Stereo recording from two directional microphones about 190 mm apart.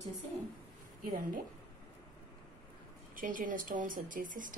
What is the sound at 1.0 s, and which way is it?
Speech, 50° right (ahead or behind).